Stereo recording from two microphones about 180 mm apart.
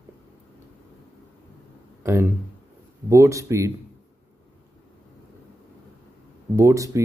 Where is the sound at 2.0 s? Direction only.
10° right (ahead or behind).